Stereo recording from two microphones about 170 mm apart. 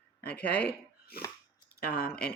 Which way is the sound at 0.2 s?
70° left (ahead or behind).